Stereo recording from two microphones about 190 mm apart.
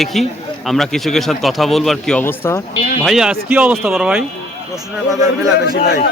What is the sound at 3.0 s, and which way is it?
A man's voice, centre (ahead or behind).